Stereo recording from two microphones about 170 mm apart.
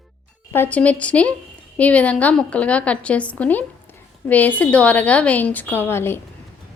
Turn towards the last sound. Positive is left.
turn(degrees=15)  # may be behind; listen again after turning